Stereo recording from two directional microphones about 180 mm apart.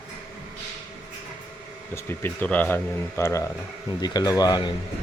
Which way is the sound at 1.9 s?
10° left (ahead or behind).